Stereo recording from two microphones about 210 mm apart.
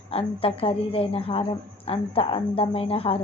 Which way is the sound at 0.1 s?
25° left (ahead or behind).